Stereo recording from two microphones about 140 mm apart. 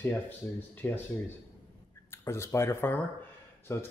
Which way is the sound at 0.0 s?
15° left (ahead or behind).